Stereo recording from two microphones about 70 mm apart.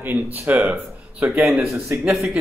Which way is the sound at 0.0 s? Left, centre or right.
Right.